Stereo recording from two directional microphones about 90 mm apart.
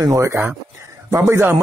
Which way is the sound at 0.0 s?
35° right (ahead or behind).